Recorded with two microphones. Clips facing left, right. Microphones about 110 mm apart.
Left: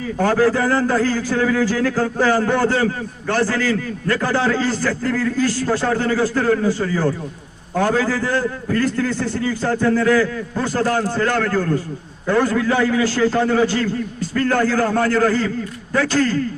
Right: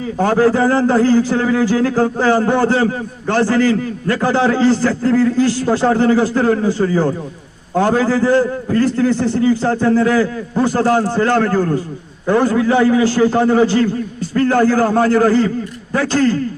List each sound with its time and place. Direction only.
0.2 s a man's voice: 20° right (ahead or behind)